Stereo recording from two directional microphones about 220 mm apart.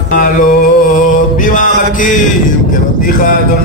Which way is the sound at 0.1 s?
40° left (ahead or behind).